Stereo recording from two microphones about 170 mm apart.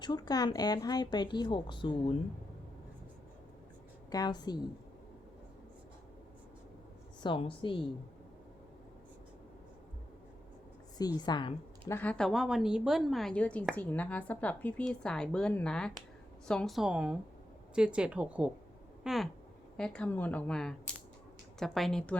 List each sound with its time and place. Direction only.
0.0 s speech: 25° left (ahead or behind)
4.1 s speech: 25° left (ahead or behind)
7.2 s speech: 30° left (ahead or behind)
10.9 s speech: 20° left (ahead or behind)
11.9 s a woman's voice: 10° left (ahead or behind); by 18.5 s 5° right (ahead or behind)
19.0 s a sound: centre (ahead or behind)
19.7 s speech: 5° left (ahead or behind)